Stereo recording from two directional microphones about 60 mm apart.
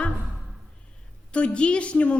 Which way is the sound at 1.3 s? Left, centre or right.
Centre.